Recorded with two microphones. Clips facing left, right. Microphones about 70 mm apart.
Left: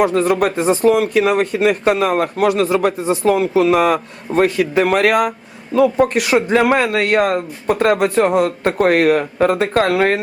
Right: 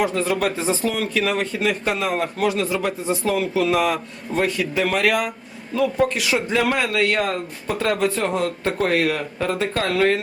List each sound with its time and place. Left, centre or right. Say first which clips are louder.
0.0 s a man's voice: left 6 dB; left
3.3 s a man's voice: left 4 dB; left